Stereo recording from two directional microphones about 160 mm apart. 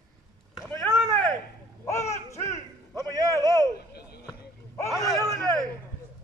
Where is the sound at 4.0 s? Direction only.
90° left.